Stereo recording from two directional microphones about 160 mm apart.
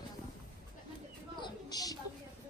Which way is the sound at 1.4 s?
25° left (ahead or behind).